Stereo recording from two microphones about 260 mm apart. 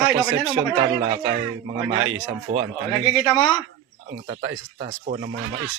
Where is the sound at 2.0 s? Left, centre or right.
Right.